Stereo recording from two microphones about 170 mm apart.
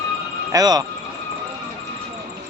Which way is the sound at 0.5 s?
20° right (ahead or behind).